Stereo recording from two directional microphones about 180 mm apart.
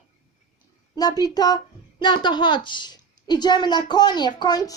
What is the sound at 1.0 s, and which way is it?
A woman's voice, 20° left (ahead or behind).